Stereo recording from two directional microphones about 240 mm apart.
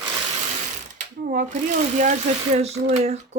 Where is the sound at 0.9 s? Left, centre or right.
Right.